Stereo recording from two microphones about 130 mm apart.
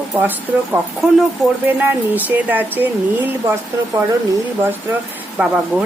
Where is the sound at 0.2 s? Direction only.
15° right (ahead or behind).